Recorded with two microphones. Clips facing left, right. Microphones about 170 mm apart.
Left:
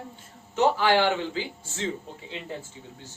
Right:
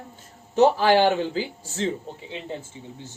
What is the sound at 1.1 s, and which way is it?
Speech, 35° right (ahead or behind).